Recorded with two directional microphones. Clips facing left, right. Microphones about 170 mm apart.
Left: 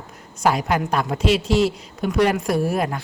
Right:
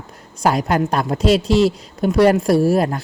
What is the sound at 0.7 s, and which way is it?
A man's voice, 45° right (ahead or behind).